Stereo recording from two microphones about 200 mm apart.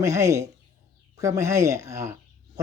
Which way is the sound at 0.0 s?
15° right (ahead or behind).